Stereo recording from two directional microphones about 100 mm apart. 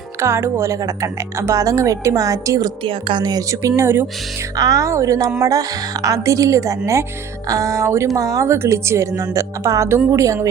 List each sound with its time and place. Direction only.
0.2 s speech: 25° right (ahead or behind)
2.8 s speech: 55° right (ahead or behind); by 10.5 s 30° right (ahead or behind)